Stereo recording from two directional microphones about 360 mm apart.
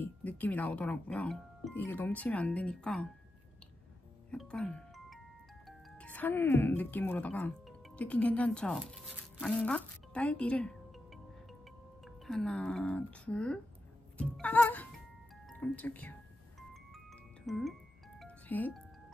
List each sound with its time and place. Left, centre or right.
0.0 s speech: centre
4.3 s music: centre
5.7 s speech: centre
12.0 s speech: centre
14.1 s music: centre
17.5 s speech: centre
18.2 s music: centre